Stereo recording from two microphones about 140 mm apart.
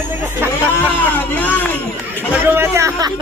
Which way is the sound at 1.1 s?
10° left (ahead or behind).